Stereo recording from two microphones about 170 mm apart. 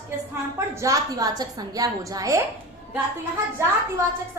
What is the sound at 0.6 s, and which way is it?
A woman's voice, 15° right (ahead or behind).